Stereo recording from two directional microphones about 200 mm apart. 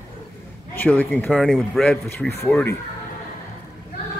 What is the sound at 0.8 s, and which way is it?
A man's voice, 10° left (ahead or behind).